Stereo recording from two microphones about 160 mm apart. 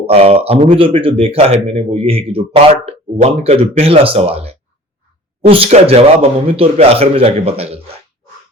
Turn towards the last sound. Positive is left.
turn(degrees=-40)  # may be behind; listen again after turning